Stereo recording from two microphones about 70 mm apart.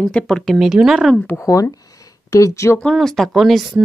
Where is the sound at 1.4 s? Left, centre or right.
Left.